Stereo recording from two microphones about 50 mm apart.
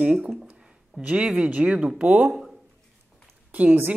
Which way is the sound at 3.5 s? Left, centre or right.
Right.